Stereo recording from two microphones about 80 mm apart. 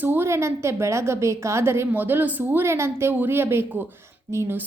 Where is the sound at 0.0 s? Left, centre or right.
Right.